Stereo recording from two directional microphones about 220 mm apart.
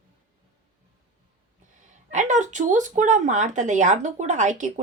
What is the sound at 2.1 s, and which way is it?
Speech, 35° right (ahead or behind).